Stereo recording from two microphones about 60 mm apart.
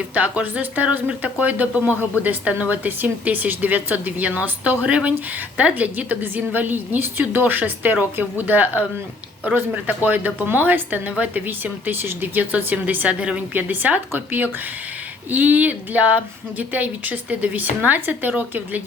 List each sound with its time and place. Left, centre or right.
0.1 s speech: right